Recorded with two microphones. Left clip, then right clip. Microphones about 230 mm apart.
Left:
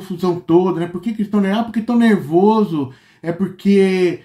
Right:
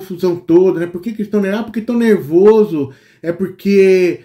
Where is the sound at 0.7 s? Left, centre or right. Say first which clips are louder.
Right 2 dB; centre.